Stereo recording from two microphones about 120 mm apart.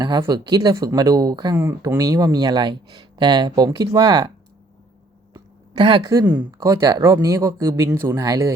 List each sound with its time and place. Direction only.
0.0 s speech: 35° right (ahead or behind)
1.5 s speech: 20° right (ahead or behind)
5.3 s a sound: 40° right (ahead or behind)
6.0 s speech: 25° right (ahead or behind)